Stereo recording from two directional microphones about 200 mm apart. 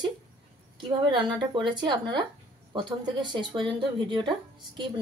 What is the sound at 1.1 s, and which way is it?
Speech, 25° right (ahead or behind).